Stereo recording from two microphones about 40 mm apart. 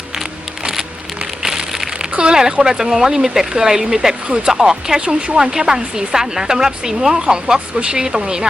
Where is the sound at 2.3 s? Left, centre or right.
Centre.